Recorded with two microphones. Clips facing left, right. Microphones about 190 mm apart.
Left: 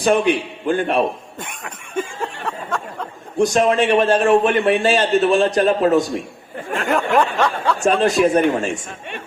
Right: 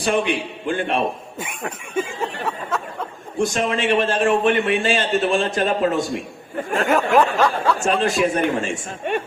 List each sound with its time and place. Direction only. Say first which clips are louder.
0.0 s a man's voice: left 4 dB; 40° left (ahead or behind)
2.2 s speech: right 1 dB; 5° right (ahead or behind)
3.3 s a man's voice: left 6 dB; 40° left (ahead or behind)
6.8 s speech: even; centre (ahead or behind)
8.0 s a man's voice: left 6 dB; 40° left (ahead or behind)
9.0 s speech: right 11 dB; 50° right (ahead or behind)